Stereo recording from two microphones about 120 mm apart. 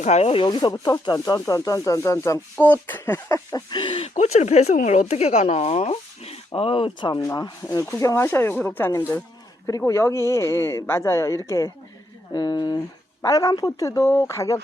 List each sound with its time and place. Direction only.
0.0 s speech: 70° left (ahead or behind)
0.4 s speech: 30° left (ahead or behind)
3.7 s speech: 40° left (ahead or behind)
4.1 s speech: 70° left (ahead or behind)
6.6 s speech: 45° left (ahead or behind)
7.2 s speech: 25° left (ahead or behind)